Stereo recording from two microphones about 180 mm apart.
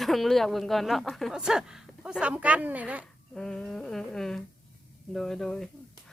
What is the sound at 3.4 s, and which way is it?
Speech, 5° left (ahead or behind).